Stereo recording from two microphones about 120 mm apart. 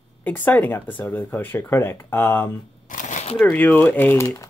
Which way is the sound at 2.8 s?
90° left.